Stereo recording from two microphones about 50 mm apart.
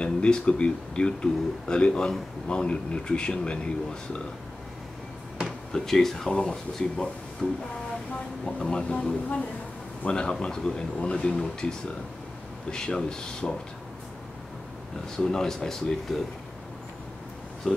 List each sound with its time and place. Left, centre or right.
0.0 s speech: centre
5.7 s speech: centre
12.7 s speech: centre
15.1 s speech: centre